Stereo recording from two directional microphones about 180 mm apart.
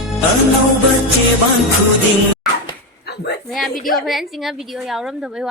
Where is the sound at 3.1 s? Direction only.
65° left (ahead or behind).